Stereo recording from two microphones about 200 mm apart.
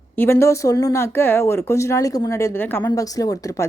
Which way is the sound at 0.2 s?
10° left (ahead or behind).